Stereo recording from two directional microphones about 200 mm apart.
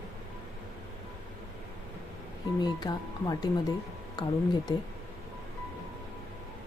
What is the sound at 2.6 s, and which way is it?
Speech, 20° left (ahead or behind).